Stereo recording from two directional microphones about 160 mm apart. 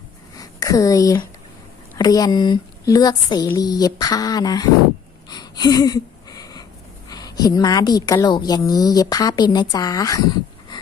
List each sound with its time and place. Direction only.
0.3 s a woman's voice: 20° left (ahead or behind)
5.3 s a sound: 25° left (ahead or behind)
7.1 s a woman's voice: 25° left (ahead or behind)